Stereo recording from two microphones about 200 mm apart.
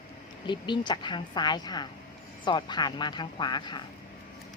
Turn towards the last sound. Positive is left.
turn(degrees=20)  # may be behind; listen again after turning